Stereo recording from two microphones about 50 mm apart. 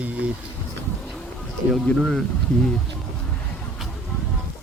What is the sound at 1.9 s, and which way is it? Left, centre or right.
Speech, centre.